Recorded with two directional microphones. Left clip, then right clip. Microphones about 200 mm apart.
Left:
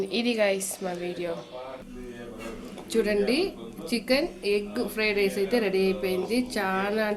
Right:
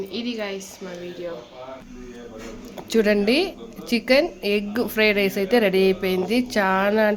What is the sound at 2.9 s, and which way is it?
A woman's voice, 50° right (ahead or behind).